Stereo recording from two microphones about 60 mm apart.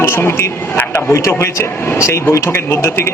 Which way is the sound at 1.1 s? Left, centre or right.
Left.